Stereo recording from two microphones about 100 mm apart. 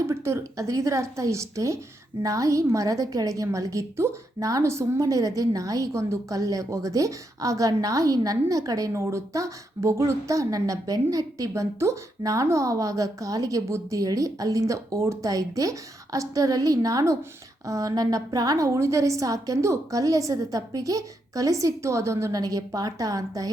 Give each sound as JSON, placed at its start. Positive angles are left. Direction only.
{"t": 0.1, "sound": "a woman's voice", "side_deg": -30}